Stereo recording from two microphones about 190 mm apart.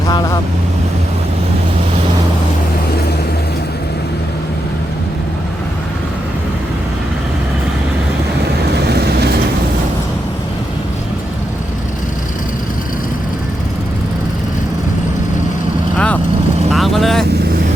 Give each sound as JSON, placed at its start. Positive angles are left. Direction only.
{"t": 0.1, "sound": "speech", "side_deg": 20}
{"t": 16.0, "sound": "vehicle", "side_deg": 5}